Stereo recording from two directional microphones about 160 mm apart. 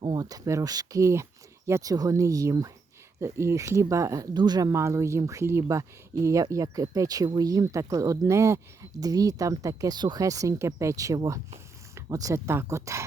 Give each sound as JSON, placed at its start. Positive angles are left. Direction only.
{"t": 0.0, "sound": "speech", "side_deg": -25}